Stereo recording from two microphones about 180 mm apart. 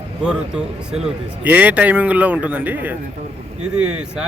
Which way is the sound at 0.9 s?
5° right (ahead or behind).